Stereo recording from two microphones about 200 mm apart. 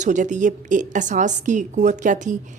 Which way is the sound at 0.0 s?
40° right (ahead or behind).